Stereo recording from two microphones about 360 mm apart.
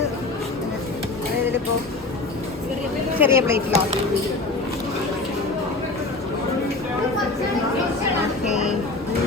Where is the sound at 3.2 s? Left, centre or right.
Centre.